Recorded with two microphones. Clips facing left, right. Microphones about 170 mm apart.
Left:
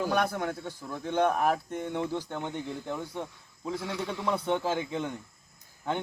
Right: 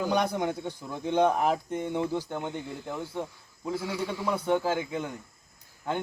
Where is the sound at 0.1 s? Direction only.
20° right (ahead or behind).